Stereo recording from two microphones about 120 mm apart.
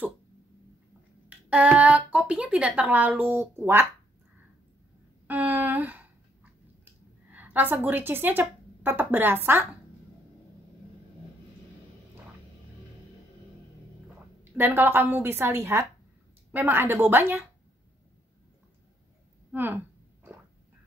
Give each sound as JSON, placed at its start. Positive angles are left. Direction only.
{"t": 1.3, "sound": "speech", "side_deg": -10}
{"t": 5.2, "sound": "speech", "side_deg": -15}
{"t": 14.4, "sound": "a woman's voice", "side_deg": -15}
{"t": 19.5, "sound": "speech", "side_deg": -15}